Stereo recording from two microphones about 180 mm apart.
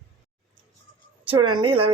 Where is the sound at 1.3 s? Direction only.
25° right (ahead or behind).